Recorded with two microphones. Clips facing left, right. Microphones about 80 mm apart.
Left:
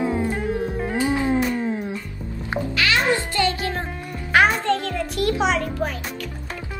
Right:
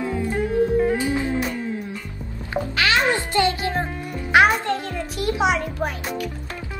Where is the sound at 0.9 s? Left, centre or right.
Left.